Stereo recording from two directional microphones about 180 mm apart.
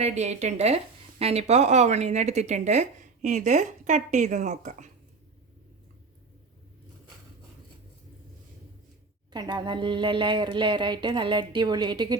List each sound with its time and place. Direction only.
0.0 s speech: 40° right (ahead or behind)
9.3 s speech: 20° right (ahead or behind)